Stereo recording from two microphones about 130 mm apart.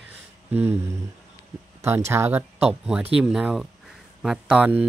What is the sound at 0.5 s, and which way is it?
Speech, 15° right (ahead or behind).